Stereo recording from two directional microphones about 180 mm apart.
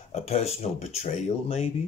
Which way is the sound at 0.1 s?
35° left (ahead or behind).